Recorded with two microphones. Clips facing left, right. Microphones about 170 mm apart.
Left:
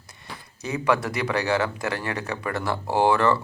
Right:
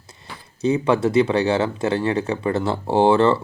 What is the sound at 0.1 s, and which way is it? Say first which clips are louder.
Speech: right 1 dB; 25° right (ahead or behind).